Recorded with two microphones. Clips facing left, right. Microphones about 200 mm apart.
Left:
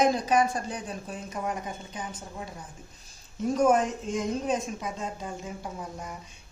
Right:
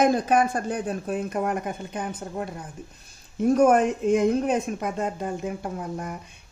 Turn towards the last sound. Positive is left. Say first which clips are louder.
# right 6 dB
turn(degrees=-60)  # may be behind; listen again after turning